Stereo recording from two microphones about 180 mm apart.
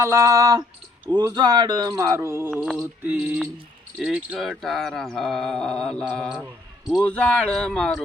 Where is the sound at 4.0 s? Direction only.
5° right (ahead or behind).